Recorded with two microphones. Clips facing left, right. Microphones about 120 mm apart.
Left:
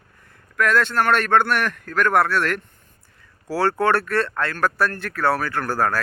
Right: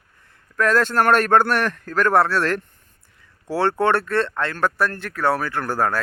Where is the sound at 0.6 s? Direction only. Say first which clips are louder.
Right 1 dB; 35° right (ahead or behind).